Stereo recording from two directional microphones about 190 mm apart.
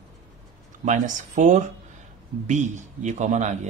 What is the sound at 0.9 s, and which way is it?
Speech, 40° right (ahead or behind).